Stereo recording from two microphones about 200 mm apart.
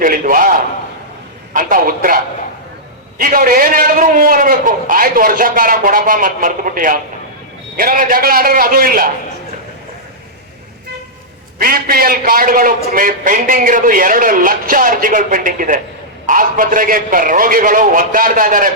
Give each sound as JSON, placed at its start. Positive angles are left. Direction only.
{"t": 0.0, "sound": "a man's voice", "side_deg": -45}
{"t": 1.5, "sound": "a man's voice", "side_deg": -45}
{"t": 11.6, "sound": "a man's voice", "side_deg": -45}